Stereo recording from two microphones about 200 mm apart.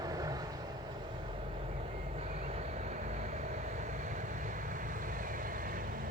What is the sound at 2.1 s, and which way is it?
Vehicle, 35° right (ahead or behind).